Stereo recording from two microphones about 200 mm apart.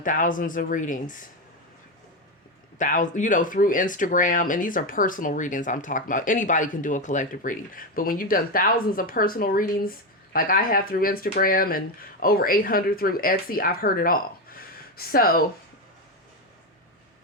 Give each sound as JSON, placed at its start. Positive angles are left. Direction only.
{"t": 0.0, "sound": "speech", "side_deg": 40}
{"t": 2.7, "sound": "speech", "side_deg": 40}